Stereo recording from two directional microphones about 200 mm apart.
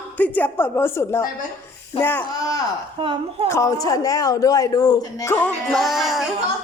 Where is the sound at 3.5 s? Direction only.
15° left (ahead or behind); by 6.3 s centre (ahead or behind).